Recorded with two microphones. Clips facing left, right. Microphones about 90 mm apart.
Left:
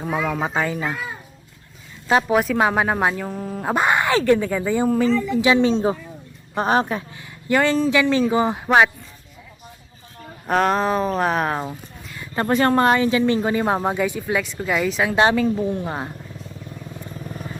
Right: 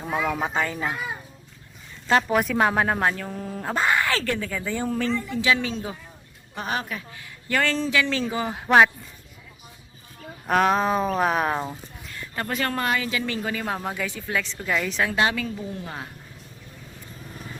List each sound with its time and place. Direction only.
0.0 s speech: centre (ahead or behind)
2.0 s speech: 10° left (ahead or behind)
2.4 s speech: centre (ahead or behind)
3.7 s speech: 20° left (ahead or behind)
6.6 s speech: 35° left (ahead or behind)
7.4 s speech: 20° left (ahead or behind)
10.4 s speech: centre (ahead or behind)
12.4 s speech: 30° left (ahead or behind); by 15.1 s 5° left (ahead or behind)
15.1 s speech: 30° left (ahead or behind)